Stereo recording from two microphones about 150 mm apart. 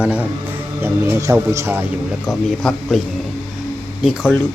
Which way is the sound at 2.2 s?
Centre (ahead or behind).